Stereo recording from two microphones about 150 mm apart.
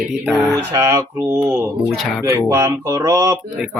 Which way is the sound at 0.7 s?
20° right (ahead or behind).